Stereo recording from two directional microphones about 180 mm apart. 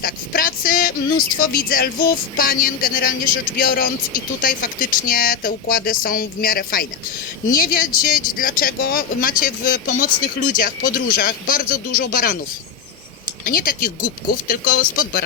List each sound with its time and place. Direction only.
0.0 s speech: 50° left (ahead or behind)
13.4 s speech: 55° left (ahead or behind)